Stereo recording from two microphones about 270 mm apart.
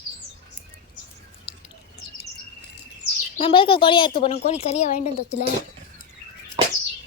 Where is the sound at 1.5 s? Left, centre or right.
Centre.